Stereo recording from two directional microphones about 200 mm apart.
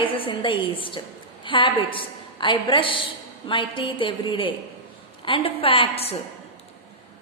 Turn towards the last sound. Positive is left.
turn(degrees=30)  # may be behind; listen again after turning